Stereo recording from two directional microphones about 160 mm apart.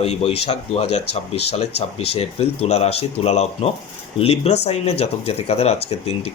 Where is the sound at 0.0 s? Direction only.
40° left (ahead or behind).